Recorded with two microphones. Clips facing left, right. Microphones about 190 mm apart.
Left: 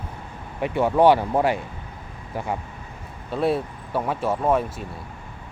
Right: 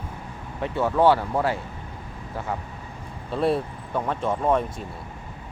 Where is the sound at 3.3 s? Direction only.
Centre (ahead or behind).